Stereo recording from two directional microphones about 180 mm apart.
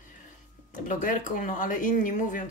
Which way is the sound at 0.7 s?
45° left (ahead or behind).